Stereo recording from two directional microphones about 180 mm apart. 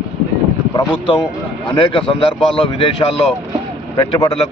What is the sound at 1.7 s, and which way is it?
Speech, 30° left (ahead or behind).